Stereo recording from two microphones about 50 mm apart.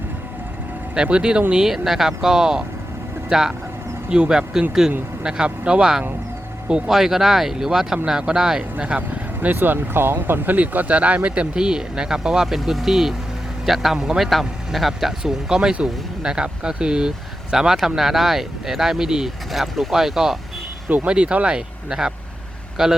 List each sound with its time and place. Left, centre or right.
1.0 s speech: centre
1.5 s speech: centre
6.8 s speech: centre
8.8 s speech: right
9.6 s speech: right; by 12.5 s centre
12.5 s a man's voice: centre
19.5 s a man's voice: centre
21.1 s speech: right